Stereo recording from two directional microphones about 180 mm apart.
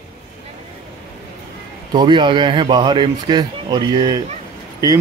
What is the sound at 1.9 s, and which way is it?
A man's voice, 25° right (ahead or behind).